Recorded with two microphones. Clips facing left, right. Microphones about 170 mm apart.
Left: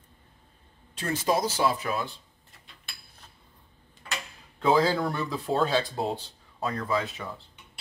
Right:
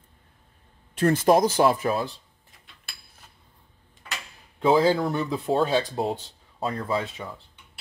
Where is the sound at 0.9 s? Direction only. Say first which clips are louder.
Right 8 dB; 50° right (ahead or behind).